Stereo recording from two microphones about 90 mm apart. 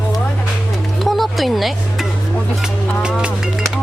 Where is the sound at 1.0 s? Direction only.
Centre (ahead or behind).